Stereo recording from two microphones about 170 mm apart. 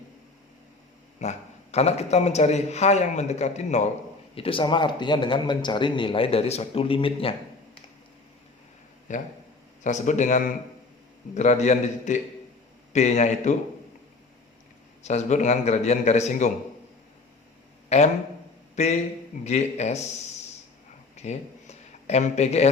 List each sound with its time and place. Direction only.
1.2 s a man's voice: 40° left (ahead or behind)
4.4 s speech: 30° left (ahead or behind)
9.1 s a man's voice: 50° left (ahead or behind)
15.0 s a man's voice: 45° left (ahead or behind)
17.8 s a man's voice: 40° left (ahead or behind)
21.2 s speech: 40° left (ahead or behind)